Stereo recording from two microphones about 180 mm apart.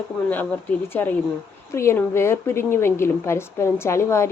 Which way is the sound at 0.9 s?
10° left (ahead or behind).